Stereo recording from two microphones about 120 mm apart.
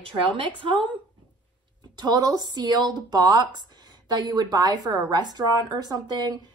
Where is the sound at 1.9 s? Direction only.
35° right (ahead or behind).